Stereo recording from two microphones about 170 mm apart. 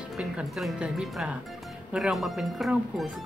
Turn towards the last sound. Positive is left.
turn(degrees=0)  # may be behind; listen again after turning